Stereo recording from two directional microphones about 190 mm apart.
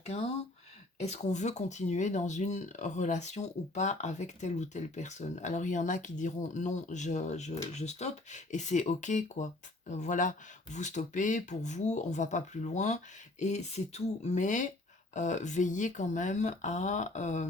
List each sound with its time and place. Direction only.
0.0 s speech: 35° left (ahead or behind)